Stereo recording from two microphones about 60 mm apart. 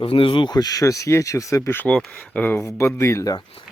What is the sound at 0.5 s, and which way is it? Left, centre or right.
Speech, left.